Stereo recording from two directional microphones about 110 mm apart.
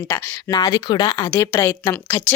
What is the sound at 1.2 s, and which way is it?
Speech, 25° left (ahead or behind).